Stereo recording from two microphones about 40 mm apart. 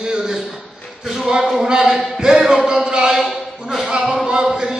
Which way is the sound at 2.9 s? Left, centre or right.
Centre.